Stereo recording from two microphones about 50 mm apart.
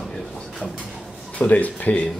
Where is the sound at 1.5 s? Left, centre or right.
Left.